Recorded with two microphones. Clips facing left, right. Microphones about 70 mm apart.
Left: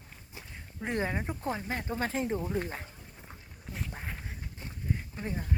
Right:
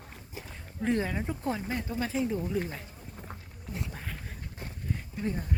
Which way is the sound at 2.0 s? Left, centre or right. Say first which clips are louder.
Right 1 dB; left.